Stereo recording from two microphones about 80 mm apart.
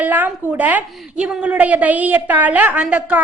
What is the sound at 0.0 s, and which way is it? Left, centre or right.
A woman's voice, right.